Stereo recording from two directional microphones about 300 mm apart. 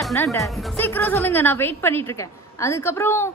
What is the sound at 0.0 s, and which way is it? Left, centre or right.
A woman's voice, centre.